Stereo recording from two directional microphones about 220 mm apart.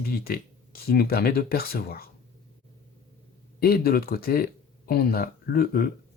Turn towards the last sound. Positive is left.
turn(degrees=40)  # may be behind; listen again after turning